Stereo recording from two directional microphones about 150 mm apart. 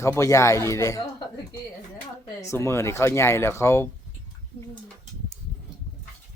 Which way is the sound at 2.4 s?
20° left (ahead or behind).